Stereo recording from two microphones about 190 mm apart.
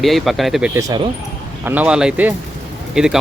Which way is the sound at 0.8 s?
20° right (ahead or behind).